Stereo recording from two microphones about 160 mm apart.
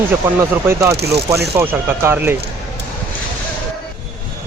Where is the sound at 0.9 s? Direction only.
90° right.